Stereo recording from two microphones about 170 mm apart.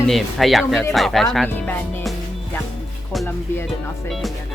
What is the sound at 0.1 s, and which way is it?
Speech, centre (ahead or behind).